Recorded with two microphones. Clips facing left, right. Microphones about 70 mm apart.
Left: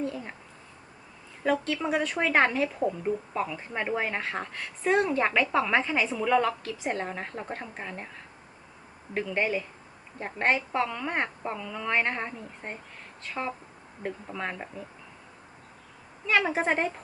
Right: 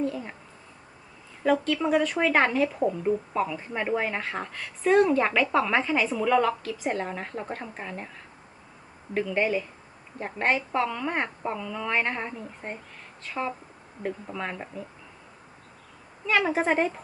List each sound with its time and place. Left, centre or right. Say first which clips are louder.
1.5 s speech: right 3 dB; centre
9.1 s speech: right 3 dB; centre
16.3 s speech: right 2 dB; centre